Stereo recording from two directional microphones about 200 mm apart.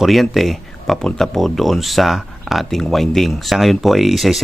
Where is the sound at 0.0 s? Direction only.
Centre (ahead or behind).